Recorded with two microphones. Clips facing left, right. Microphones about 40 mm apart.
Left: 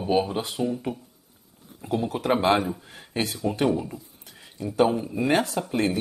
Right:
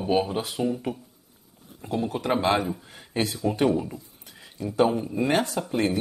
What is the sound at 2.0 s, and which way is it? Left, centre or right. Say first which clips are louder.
Speech: left 1 dB; centre.